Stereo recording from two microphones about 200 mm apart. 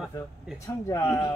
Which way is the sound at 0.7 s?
15° left (ahead or behind).